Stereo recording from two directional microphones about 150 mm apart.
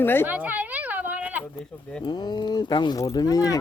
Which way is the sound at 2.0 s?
30° left (ahead or behind).